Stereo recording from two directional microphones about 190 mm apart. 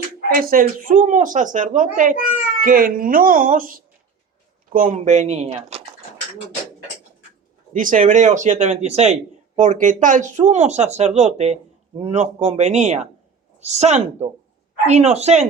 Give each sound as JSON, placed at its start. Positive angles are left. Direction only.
{"t": 0.3, "sound": "speech", "side_deg": -45}
{"t": 7.7, "sound": "speech", "side_deg": -45}